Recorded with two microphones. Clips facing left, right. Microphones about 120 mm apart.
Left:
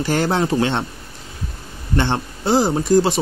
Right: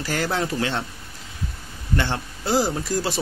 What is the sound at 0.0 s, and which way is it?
Speech, 30° left (ahead or behind).